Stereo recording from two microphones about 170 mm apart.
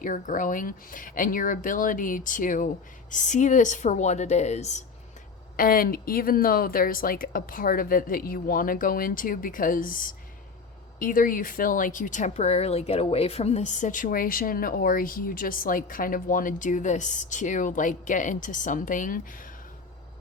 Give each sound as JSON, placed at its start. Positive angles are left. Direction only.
{"t": 0.0, "sound": "speech", "side_deg": 50}
{"t": 5.5, "sound": "speech", "side_deg": 60}